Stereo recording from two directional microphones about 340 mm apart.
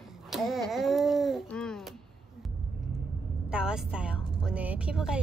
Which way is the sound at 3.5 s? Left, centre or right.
Centre.